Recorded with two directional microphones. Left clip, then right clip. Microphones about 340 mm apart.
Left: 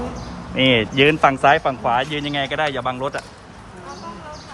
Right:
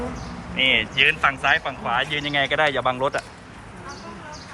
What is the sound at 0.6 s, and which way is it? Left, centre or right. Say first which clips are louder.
Speech: left 3 dB; left.